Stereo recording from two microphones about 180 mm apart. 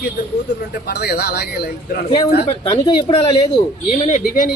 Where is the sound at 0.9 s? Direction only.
60° left (ahead or behind).